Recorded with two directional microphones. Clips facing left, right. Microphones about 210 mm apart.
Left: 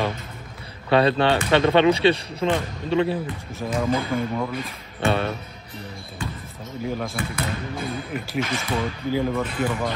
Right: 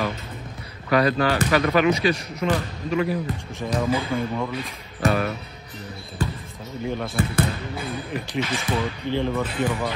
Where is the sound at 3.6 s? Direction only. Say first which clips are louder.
Even; centre (ahead or behind).